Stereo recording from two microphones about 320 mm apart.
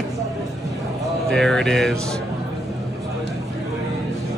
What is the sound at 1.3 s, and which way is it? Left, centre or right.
Speech, centre.